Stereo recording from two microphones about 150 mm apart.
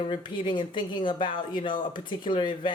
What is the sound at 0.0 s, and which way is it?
Speech, 35° left (ahead or behind).